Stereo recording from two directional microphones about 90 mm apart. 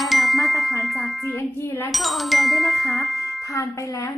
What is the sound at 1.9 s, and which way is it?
Chime, centre (ahead or behind).